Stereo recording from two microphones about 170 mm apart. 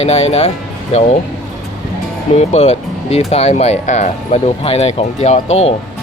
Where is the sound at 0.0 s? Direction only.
40° left (ahead or behind).